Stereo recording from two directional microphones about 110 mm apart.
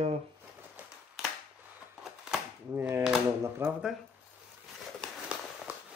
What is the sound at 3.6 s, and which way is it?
Speech, 20° right (ahead or behind).